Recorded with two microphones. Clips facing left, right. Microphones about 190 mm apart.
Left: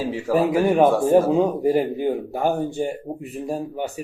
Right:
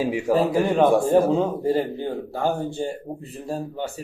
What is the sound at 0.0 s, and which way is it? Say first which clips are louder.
Speech: right 2 dB; 15° right (ahead or behind).